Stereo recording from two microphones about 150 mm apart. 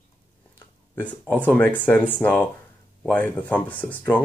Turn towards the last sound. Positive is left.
turn(degrees=10)  # may be behind; listen again after turning